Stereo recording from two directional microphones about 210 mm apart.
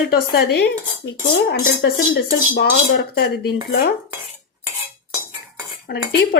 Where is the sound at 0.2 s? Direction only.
45° left (ahead or behind).